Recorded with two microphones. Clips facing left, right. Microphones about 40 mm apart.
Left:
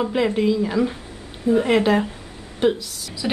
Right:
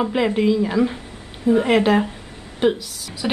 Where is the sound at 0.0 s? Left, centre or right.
Centre.